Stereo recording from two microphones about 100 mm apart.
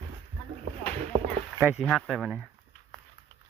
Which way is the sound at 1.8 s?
Centre (ahead or behind).